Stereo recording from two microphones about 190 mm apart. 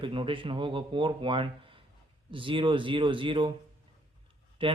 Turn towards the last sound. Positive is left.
turn(degrees=-25)  # may be behind; listen again after turning